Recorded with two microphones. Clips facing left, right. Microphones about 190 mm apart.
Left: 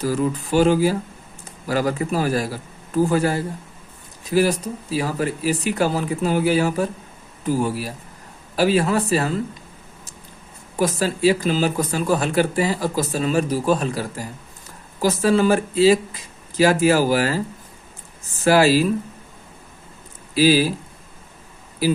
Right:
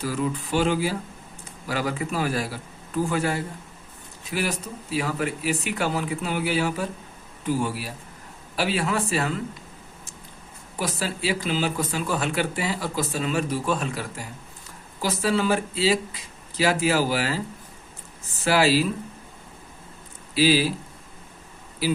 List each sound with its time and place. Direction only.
0.0 s speech: 40° left (ahead or behind)
10.8 s speech: 45° left (ahead or behind)
18.4 s speech: 45° left (ahead or behind)
20.3 s speech: 45° left (ahead or behind)